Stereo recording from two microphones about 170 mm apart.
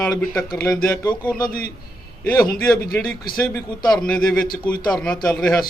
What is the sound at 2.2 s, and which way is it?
Speech, 15° left (ahead or behind).